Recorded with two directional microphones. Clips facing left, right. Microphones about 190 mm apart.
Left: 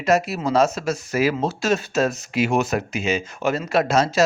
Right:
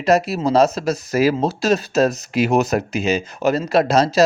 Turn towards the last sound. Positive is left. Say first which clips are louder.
# right 3 dB
turn(degrees=-35)  # may be behind; listen again after turning